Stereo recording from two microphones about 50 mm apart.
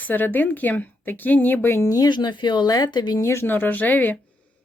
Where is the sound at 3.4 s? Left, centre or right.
Left.